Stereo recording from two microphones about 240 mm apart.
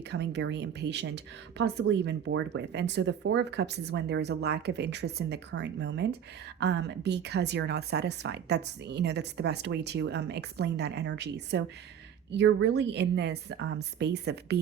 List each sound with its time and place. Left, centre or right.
0.1 s speech: right